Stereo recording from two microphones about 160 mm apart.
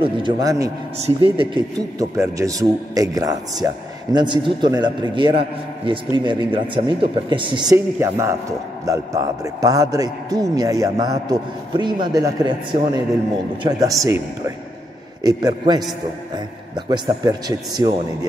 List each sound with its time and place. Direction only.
0.0 s a man's voice: 25° right (ahead or behind)
0.9 s speech: 40° right (ahead or behind)
2.0 s a man's voice: 20° right (ahead or behind)
7.7 s a man's voice: 15° right (ahead or behind)